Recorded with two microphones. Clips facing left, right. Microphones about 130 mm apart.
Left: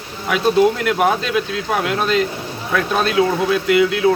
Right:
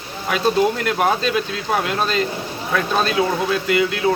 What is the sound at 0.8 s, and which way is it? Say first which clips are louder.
Speech: left 2 dB; 10° left (ahead or behind).